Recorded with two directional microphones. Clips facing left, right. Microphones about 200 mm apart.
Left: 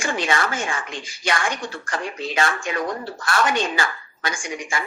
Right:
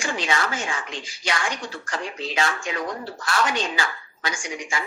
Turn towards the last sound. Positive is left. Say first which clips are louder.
# left 2 dB
turn(degrees=55)  # may be behind; listen again after turning